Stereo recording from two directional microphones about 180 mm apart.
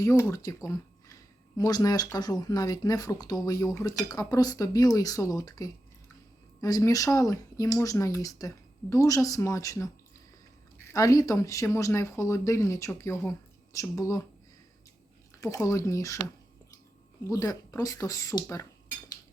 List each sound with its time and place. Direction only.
0.0 s speech: 15° left (ahead or behind)
15.4 s speech: 15° left (ahead or behind)